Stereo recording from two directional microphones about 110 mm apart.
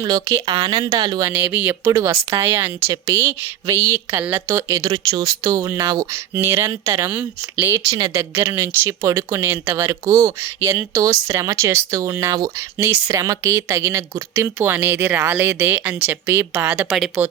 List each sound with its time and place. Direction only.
0.0 s speech: 35° right (ahead or behind)
1.3 s speech: 15° right (ahead or behind)
7.1 s speech: 15° right (ahead or behind)
7.9 s speech: 30° right (ahead or behind); by 17.3 s 15° right (ahead or behind)